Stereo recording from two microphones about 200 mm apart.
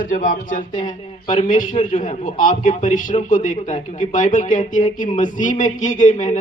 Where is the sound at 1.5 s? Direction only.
40° left (ahead or behind).